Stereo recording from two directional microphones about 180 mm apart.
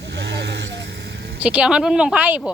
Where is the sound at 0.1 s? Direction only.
70° right (ahead or behind).